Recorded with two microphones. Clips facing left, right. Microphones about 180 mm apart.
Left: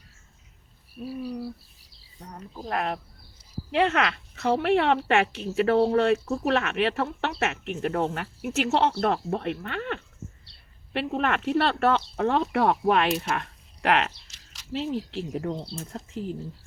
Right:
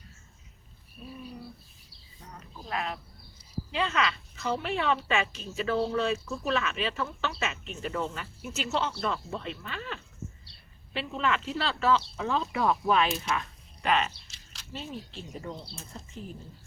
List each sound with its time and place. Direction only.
2.3 s speech: 45° left (ahead or behind); by 16.3 s 80° left